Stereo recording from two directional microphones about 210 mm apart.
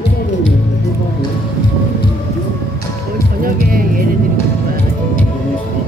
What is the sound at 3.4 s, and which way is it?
Speech, 45° right (ahead or behind).